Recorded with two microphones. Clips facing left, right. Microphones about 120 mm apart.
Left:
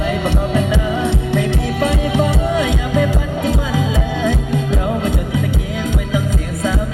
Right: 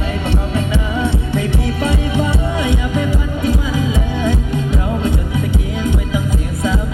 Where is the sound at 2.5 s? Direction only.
85° left.